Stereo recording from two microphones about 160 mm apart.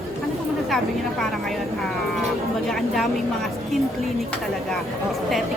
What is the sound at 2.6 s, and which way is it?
Speech, centre (ahead or behind).